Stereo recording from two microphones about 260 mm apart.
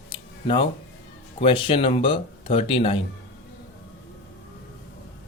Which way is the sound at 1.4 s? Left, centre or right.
Left.